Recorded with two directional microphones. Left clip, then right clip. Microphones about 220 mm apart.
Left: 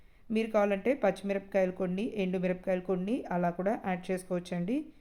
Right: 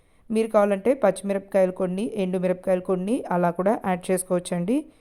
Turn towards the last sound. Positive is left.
turn(degrees=-25)  # may be behind; listen again after turning